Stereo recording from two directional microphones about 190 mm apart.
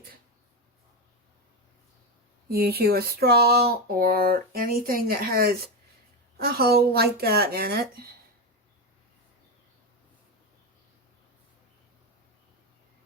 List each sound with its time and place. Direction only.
2.5 s speech: 55° right (ahead or behind)